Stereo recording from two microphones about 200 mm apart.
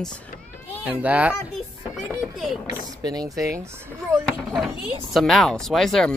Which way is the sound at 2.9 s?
20° right (ahead or behind).